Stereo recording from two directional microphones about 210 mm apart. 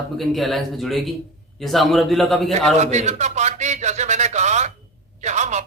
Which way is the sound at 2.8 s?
35° right (ahead or behind).